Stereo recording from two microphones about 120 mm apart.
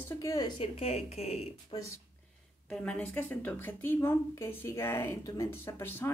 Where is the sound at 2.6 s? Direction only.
10° left (ahead or behind).